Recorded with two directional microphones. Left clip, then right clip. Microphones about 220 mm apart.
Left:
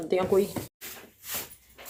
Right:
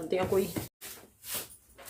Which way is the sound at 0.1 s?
20° left (ahead or behind).